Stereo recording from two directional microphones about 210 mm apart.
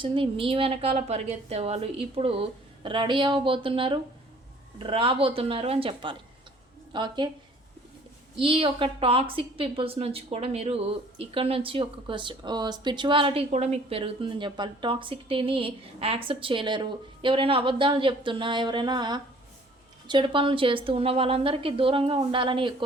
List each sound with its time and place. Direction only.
0.0 s a woman's voice: 25° right (ahead or behind)
8.4 s a woman's voice: 25° right (ahead or behind)